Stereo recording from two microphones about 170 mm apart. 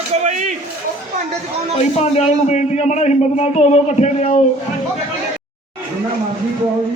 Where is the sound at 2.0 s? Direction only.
40° left (ahead or behind).